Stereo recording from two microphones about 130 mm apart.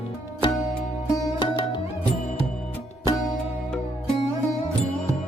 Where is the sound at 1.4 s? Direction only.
35° left (ahead or behind).